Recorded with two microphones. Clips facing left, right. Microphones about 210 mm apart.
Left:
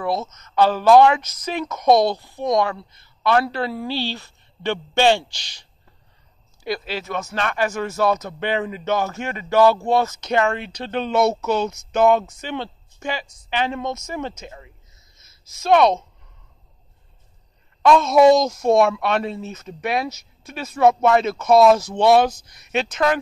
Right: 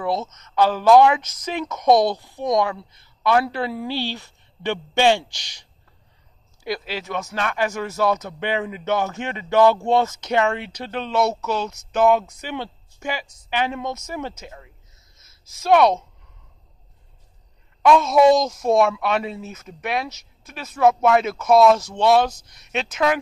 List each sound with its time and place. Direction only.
0.6 s speech: 15° right (ahead or behind)
10.9 s speech: centre (ahead or behind)
15.6 s speech: 10° right (ahead or behind)
17.8 s speech: 5° right (ahead or behind)